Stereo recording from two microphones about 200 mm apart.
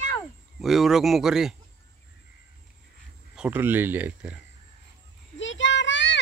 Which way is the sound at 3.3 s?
10° right (ahead or behind).